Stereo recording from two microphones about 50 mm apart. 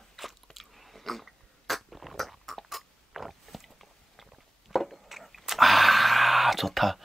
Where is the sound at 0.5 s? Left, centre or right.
Centre.